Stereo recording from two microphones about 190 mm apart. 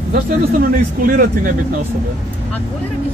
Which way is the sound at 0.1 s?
50° right (ahead or behind).